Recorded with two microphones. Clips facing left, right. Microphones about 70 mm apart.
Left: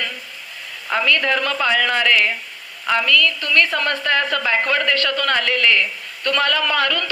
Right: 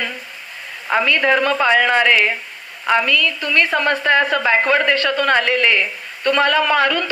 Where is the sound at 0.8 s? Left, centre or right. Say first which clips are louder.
Right 3 dB; right.